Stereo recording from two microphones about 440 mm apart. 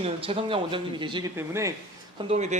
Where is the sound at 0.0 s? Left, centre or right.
Centre.